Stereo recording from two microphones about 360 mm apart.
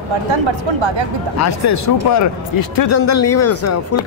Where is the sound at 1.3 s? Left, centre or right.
Left.